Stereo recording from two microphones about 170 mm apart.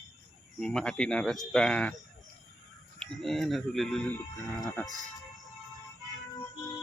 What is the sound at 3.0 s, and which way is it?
Speech, centre (ahead or behind).